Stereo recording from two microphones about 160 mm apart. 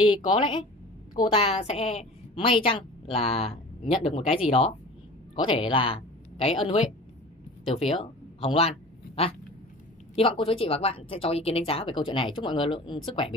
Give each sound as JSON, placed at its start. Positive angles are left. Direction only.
{"t": 0.1, "sound": "a woman's voice", "side_deg": 30}
{"t": 8.5, "sound": "a sound", "side_deg": 40}
{"t": 10.1, "sound": "a woman's voice", "side_deg": 35}